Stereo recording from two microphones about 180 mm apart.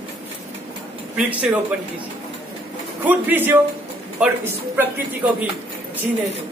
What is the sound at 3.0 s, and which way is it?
Speech, 10° right (ahead or behind).